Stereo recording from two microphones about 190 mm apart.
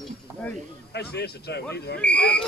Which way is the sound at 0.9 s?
60° left (ahead or behind).